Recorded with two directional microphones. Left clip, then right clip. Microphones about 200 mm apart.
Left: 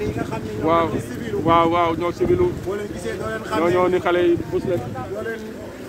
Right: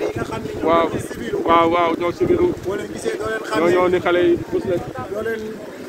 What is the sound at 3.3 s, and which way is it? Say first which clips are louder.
Speech: right 1 dB; 55° right (ahead or behind).